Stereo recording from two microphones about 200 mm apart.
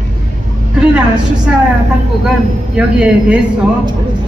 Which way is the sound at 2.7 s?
5° right (ahead or behind).